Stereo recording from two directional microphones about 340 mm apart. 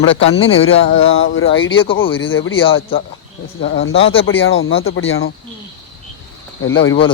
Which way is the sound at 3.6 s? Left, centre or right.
Left.